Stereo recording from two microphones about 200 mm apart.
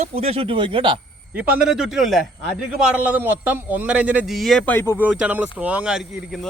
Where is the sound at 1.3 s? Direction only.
5° right (ahead or behind); by 4.9 s 10° left (ahead or behind).